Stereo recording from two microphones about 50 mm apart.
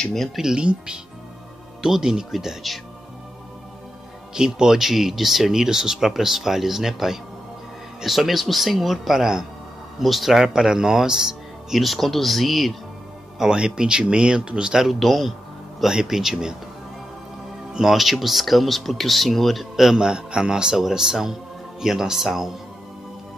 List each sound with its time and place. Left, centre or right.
0.4 s speech: centre
4.3 s speech: centre
11.8 s speech: centre
13.4 s speech: centre
15.8 s speech: centre
17.7 s speech: centre
20.1 s speech: centre